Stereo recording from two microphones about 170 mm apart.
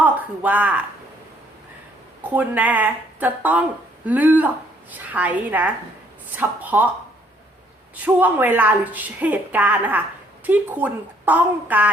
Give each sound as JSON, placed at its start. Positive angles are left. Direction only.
{"t": 0.0, "sound": "a sound", "side_deg": -10}
{"t": 2.3, "sound": "a woman's voice", "side_deg": -10}
{"t": 8.0, "sound": "a woman's voice", "side_deg": -10}